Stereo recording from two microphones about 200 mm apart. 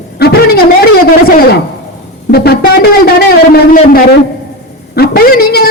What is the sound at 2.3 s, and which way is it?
Speech, 50° left (ahead or behind).